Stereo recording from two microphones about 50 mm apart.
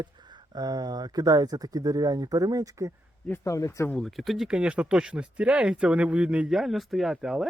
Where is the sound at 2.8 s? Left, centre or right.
Right.